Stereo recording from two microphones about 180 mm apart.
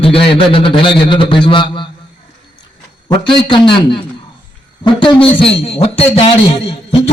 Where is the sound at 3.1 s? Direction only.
25° left (ahead or behind).